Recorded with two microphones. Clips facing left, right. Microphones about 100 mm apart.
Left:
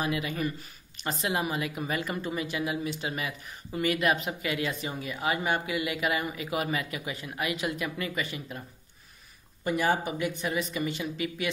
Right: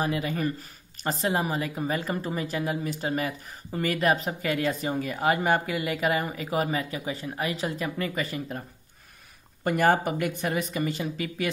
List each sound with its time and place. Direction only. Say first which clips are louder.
0.0 s speech: right 3 dB; 35° right (ahead or behind)
9.7 s a woman's voice: right 4 dB; 50° right (ahead or behind)